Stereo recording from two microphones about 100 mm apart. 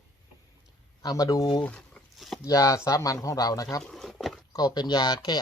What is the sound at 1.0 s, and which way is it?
Speech, 40° left (ahead or behind).